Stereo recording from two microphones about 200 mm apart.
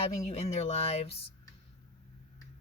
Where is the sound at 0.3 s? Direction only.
30° left (ahead or behind).